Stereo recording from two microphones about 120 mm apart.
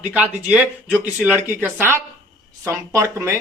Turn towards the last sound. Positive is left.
turn(degrees=-20)  # may be behind; listen again after turning